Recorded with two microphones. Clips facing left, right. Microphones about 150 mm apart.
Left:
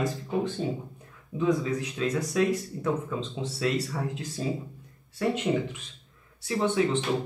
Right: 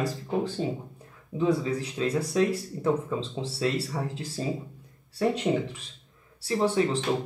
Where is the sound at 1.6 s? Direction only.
30° right (ahead or behind).